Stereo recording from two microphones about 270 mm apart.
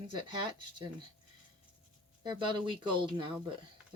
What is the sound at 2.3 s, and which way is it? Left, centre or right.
Speech, centre.